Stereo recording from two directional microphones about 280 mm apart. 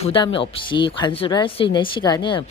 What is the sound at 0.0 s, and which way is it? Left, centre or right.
Speech, centre.